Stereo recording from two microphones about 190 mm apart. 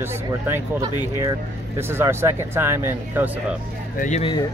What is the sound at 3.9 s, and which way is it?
Speech, 45° left (ahead or behind).